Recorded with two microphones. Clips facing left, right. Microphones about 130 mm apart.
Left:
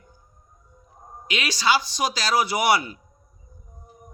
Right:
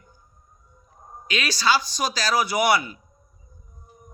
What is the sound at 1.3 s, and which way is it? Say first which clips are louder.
A man's voice: even; 20° left (ahead or behind).